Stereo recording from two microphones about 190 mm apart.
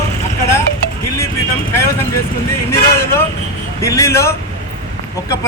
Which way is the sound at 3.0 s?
15° left (ahead or behind).